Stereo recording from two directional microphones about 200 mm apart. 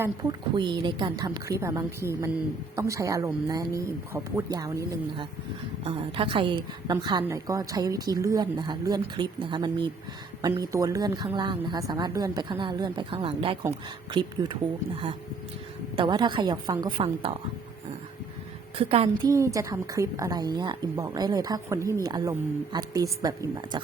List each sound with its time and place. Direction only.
0.0 s a woman's voice: 20° right (ahead or behind)
5.8 s a woman's voice: 25° right (ahead or behind)
16.0 s a woman's voice: 25° right (ahead or behind)
18.8 s a woman's voice: 30° right (ahead or behind)